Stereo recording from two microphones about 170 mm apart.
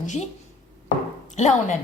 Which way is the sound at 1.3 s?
45° left (ahead or behind).